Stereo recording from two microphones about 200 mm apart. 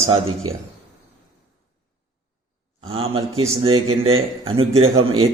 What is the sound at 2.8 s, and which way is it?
A man's voice, 25° right (ahead or behind).